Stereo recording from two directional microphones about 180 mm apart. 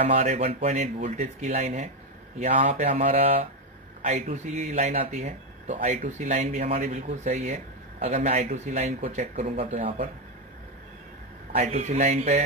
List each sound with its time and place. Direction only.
0.0 s speech: 35° right (ahead or behind)
11.5 s speech: 40° right (ahead or behind)